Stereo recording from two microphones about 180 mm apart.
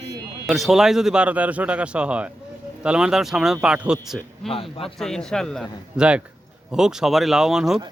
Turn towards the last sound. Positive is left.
turn(degrees=-5)  # may be behind; listen again after turning